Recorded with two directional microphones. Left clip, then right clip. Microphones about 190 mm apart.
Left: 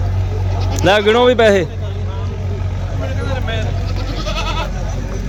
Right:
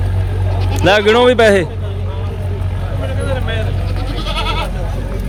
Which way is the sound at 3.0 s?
55° left (ahead or behind).